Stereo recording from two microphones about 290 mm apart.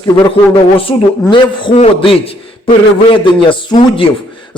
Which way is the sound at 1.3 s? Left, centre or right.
Centre.